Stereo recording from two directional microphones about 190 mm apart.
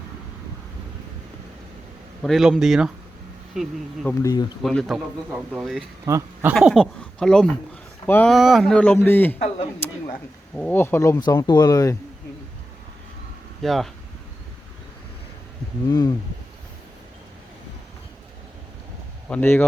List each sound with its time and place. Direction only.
2.2 s speech: centre (ahead or behind)
4.2 s speech: 20° left (ahead or behind)
4.6 s speech: centre (ahead or behind)
6.1 s speech: 15° right (ahead or behind)
6.5 s speech: centre (ahead or behind)
10.5 s speech: 10° left (ahead or behind)
13.6 s speech: centre (ahead or behind)
15.9 s speech: 20° left (ahead or behind)
19.3 s speech: 10° left (ahead or behind)